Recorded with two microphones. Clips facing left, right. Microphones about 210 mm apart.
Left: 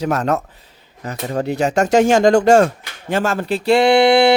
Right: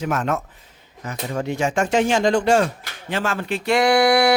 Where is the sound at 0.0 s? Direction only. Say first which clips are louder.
Left 4 dB; 35° left (ahead or behind).